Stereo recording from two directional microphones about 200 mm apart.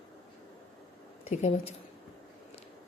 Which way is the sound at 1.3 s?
35° left (ahead or behind).